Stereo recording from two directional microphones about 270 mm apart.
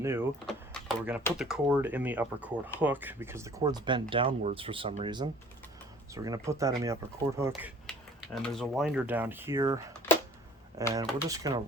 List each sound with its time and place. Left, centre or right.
0.0 s speech: centre
0.4 s typewriter: centre
1.4 s speech: centre
7.9 s typing: centre
8.4 s speech: centre